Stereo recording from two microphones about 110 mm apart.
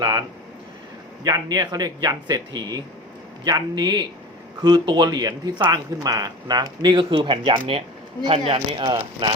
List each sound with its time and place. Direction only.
0.0 s speech: 35° right (ahead or behind)